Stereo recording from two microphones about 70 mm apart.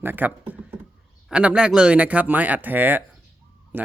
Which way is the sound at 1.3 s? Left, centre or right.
Centre.